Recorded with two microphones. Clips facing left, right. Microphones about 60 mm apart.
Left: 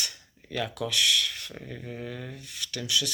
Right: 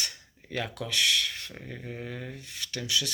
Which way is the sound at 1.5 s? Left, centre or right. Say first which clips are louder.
Left 1 dB; centre.